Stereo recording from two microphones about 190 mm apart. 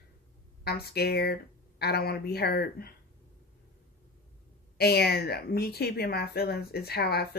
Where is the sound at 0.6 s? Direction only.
55° left (ahead or behind).